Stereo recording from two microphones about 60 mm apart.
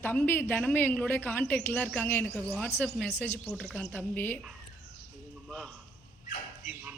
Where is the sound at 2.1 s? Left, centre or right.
Left.